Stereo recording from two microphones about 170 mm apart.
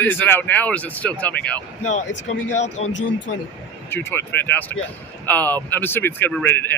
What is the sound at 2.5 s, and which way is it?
Speech, 40° left (ahead or behind).